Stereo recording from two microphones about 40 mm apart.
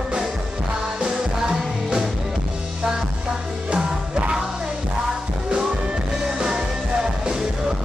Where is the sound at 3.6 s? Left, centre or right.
Right.